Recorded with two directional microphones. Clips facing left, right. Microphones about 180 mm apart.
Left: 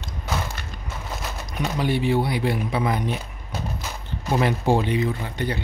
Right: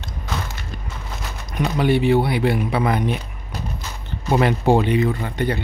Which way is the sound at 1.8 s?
65° right (ahead or behind).